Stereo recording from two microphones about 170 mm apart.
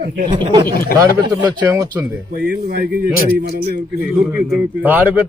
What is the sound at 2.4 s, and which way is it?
A man's voice, 65° right (ahead or behind).